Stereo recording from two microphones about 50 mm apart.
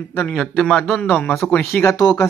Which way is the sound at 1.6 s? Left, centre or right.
Left.